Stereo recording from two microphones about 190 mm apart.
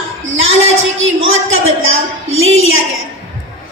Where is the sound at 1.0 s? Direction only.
90° right.